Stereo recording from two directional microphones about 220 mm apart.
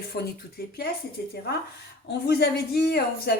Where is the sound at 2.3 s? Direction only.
45° left (ahead or behind).